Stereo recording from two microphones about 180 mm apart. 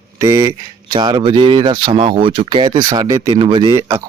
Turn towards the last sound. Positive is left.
turn(degrees=-20)  # may be behind; listen again after turning